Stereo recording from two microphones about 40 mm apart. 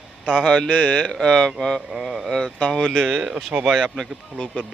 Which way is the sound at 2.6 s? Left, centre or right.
Centre.